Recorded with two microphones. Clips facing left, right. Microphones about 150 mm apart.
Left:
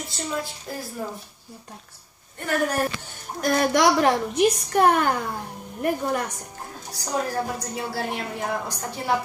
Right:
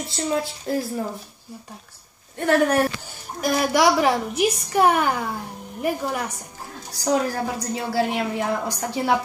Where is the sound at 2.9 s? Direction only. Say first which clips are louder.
Even; 5° right (ahead or behind).